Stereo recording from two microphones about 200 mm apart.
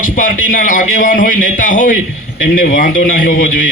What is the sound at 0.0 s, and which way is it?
A man's voice, 40° left (ahead or behind).